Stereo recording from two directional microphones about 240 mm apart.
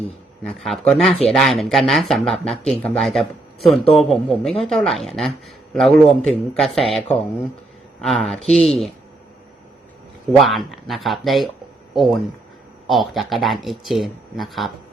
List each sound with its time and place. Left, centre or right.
0.4 s speech: centre
10.3 s speech: centre